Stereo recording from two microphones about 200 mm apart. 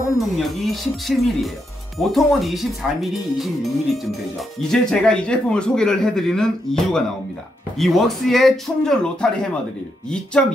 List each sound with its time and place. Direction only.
0.2 s a man's voice: centre (ahead or behind)